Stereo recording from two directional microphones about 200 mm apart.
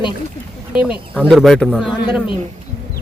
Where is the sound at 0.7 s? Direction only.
5° right (ahead or behind).